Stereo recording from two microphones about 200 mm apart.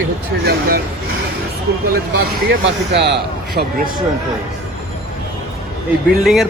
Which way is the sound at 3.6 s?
45° right (ahead or behind).